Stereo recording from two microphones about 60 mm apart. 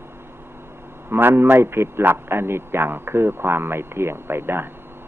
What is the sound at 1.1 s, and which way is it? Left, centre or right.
Speech, right.